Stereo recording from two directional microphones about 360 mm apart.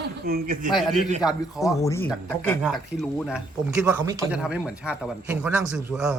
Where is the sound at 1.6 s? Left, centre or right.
Centre.